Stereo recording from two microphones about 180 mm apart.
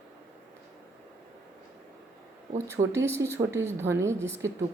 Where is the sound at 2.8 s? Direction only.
35° right (ahead or behind).